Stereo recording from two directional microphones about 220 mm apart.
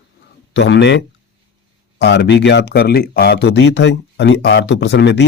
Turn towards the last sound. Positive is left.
turn(degrees=50)  # may be behind; listen again after turning